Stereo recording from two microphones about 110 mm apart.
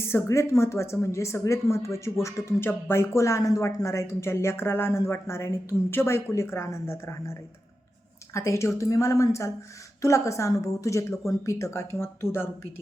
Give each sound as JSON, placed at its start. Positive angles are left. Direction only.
{"t": 0.0, "sound": "speech", "side_deg": 25}